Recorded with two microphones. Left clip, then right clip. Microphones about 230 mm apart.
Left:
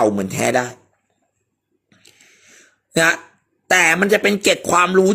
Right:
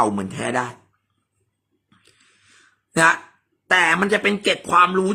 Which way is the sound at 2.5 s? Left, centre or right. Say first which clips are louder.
Left 6 dB; centre.